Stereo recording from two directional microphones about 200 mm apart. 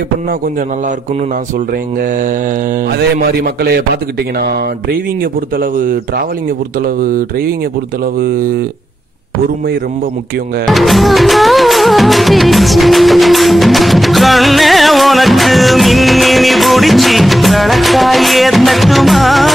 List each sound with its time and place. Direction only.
3.2 s speech: 50° right (ahead or behind)
5.6 s speech: 45° right (ahead or behind)
10.7 s music: centre (ahead or behind)